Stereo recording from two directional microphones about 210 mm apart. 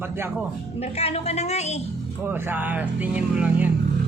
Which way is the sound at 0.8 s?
30° left (ahead or behind).